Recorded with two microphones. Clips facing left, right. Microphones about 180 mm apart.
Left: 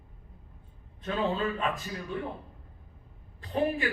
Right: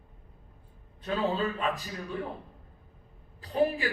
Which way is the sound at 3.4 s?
35° right (ahead or behind).